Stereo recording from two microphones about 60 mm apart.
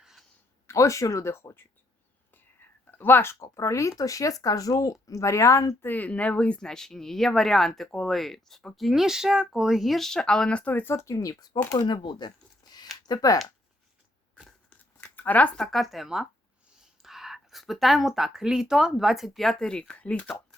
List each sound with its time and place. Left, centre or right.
0.7 s speech: left
2.3 s whispering: left
3.4 s speech: left
5.8 s speech: left; by 10.6 s centre
10.6 s speech: left
10.8 s speech: left
11.1 s speech: left
13.0 s speech: left
14.8 s a sound: left
15.5 s speech: centre